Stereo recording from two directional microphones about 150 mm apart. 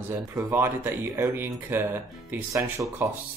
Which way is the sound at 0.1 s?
15° right (ahead or behind).